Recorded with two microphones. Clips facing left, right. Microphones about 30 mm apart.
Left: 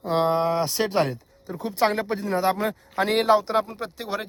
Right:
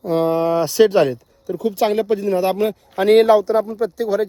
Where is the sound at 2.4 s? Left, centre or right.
Right.